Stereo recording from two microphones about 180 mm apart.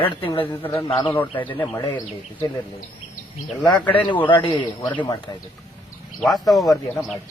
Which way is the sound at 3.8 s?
10° left (ahead or behind).